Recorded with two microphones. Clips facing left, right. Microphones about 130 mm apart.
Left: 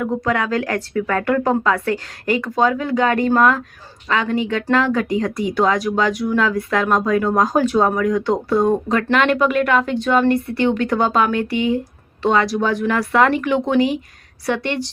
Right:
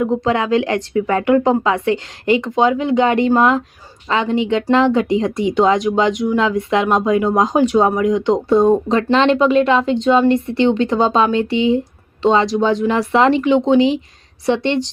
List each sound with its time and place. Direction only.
0.0 s speech: 25° right (ahead or behind)